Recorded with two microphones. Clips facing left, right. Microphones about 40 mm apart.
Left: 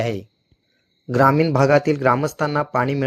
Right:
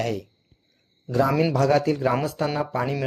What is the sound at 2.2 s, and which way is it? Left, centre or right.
Speech, left.